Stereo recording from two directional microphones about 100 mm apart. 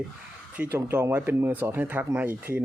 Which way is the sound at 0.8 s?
25° right (ahead or behind).